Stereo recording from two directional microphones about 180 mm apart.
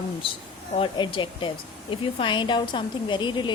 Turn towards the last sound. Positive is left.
turn(degrees=25)  # may be behind; listen again after turning